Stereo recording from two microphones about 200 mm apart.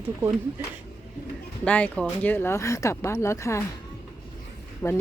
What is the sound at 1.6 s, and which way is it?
Speech, 5° left (ahead or behind).